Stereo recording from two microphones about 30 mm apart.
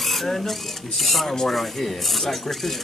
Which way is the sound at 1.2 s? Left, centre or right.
Centre.